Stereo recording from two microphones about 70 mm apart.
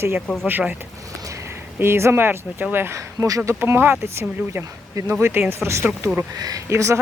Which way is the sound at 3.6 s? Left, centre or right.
Right.